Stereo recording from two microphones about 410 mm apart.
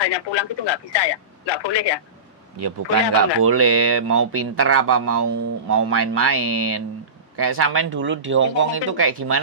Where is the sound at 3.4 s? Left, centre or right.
Right.